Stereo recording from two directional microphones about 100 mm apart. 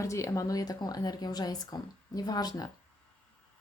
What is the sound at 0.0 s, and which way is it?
Speech, 30° left (ahead or behind).